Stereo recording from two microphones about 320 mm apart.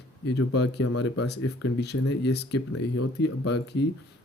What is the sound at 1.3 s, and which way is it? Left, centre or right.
Speech, left.